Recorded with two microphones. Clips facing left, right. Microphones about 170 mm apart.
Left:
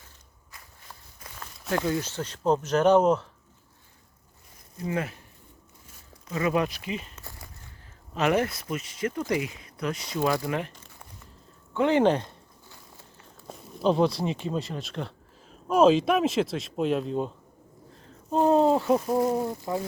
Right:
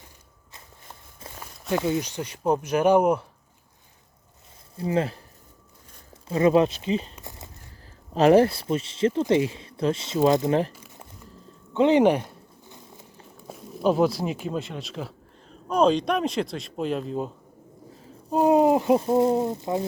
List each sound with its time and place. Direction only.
0.5 s walk: 25° right (ahead or behind)
1.7 s speech: 15° right (ahead or behind)
4.8 s speech: 30° right (ahead or behind)
6.2 s speech: 30° right (ahead or behind)
7.2 s a sound: 20° right (ahead or behind)
8.1 s speech: 35° right (ahead or behind)
11.7 s a sound: 20° right (ahead or behind)
13.5 s speech: 5° right (ahead or behind); by 19.8 s 20° right (ahead or behind)